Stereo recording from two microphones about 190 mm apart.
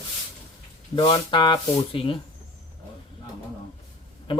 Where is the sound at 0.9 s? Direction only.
25° left (ahead or behind).